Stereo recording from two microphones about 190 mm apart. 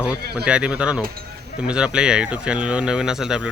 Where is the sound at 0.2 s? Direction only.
55° right (ahead or behind).